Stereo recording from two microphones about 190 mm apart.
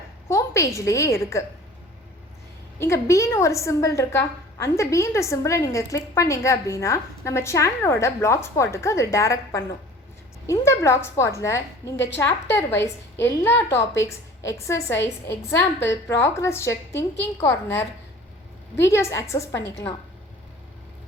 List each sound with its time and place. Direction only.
0.3 s a woman's voice: 15° left (ahead or behind)
2.7 s a woman's voice: 15° left (ahead or behind)